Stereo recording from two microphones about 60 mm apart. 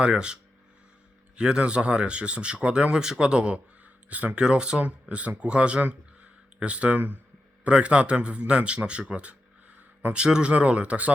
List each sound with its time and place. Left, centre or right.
0.0 s speech: centre
1.4 s speech: centre
4.4 s speech: centre